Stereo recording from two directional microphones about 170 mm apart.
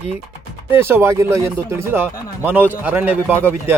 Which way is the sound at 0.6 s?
15° right (ahead or behind).